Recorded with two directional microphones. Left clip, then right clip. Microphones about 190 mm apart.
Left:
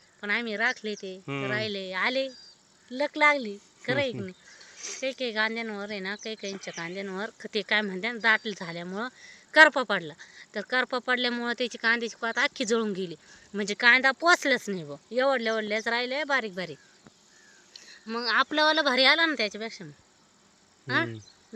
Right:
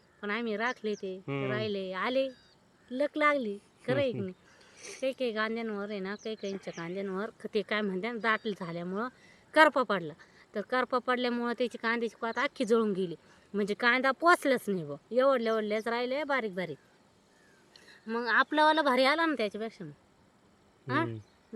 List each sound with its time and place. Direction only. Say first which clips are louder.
0.2 s speech: left 5 dB; 20° right (ahead or behind)
1.2 s speech: left 5 dB; centre (ahead or behind)
1.5 s speech: left 4 dB; 20° right (ahead or behind)
4.8 s a sound: left 5 dB; 5° left (ahead or behind)
5.0 s speech: left 3 dB; 20° right (ahead or behind)
17.7 s speech: left 1 dB; 20° right (ahead or behind)